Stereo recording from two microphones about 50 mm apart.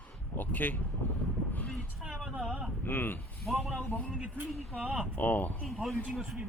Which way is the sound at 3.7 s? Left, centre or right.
Left.